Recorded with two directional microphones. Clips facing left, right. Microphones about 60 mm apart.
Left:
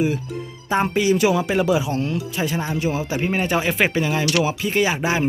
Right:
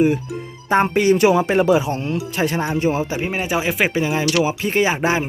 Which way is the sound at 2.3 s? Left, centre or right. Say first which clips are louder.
Right 3 dB; right.